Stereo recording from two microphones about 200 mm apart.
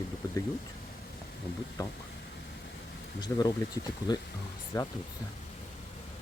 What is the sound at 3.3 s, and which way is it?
Speech, 10° left (ahead or behind).